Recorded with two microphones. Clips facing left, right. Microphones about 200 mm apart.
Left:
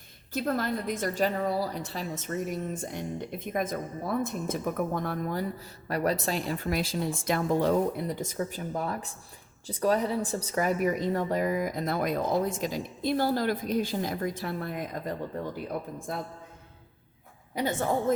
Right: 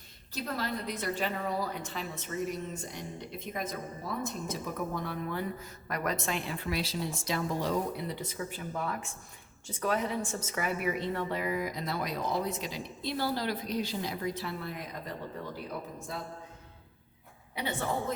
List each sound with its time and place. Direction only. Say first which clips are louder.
0.3 s a woman's voice: left 6 dB; 50° left (ahead or behind)
17.5 s a woman's voice: left 6 dB; 45° left (ahead or behind)